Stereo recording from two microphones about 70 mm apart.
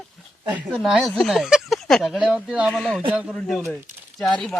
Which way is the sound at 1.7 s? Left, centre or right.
Centre.